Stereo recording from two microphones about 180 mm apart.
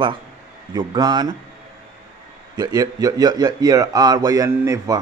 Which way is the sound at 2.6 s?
20° right (ahead or behind).